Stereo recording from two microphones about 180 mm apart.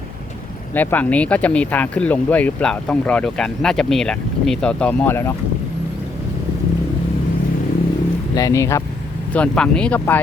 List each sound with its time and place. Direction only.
0.7 s speech: 10° left (ahead or behind)
8.4 s speech: 15° left (ahead or behind)